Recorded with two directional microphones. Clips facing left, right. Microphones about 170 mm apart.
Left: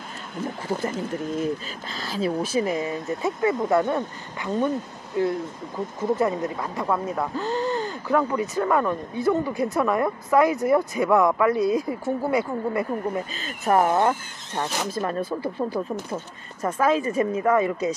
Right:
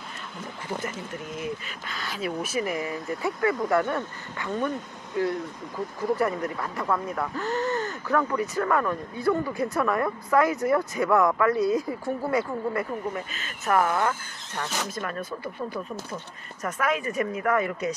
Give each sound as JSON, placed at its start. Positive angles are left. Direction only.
{"t": 1.4, "sound": "a woman's voice", "side_deg": 30}
{"t": 13.3, "sound": "speech", "side_deg": 30}